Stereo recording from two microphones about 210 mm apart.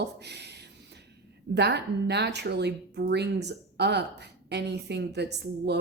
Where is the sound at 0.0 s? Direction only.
55° right (ahead or behind).